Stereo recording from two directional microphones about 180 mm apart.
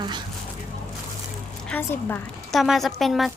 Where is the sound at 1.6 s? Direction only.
10° left (ahead or behind).